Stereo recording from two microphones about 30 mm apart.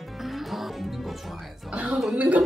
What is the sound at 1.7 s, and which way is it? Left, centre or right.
Speech, right.